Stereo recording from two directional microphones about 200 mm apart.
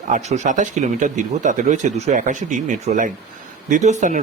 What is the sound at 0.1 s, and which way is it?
A man's voice, 35° right (ahead or behind).